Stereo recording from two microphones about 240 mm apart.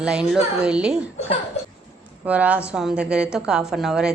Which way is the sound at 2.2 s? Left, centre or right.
Centre.